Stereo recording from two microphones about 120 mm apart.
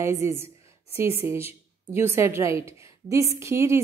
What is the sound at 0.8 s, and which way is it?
Speech, 55° left (ahead or behind).